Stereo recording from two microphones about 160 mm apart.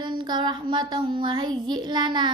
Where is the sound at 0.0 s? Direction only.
30° right (ahead or behind).